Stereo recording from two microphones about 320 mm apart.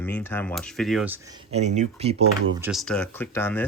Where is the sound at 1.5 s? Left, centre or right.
Right.